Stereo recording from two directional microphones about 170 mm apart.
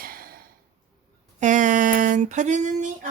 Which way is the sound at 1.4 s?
45° right (ahead or behind).